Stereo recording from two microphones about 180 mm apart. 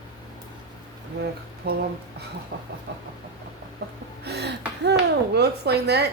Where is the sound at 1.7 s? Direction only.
65° right (ahead or behind).